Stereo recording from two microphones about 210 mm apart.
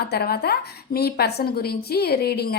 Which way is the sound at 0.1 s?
50° left (ahead or behind).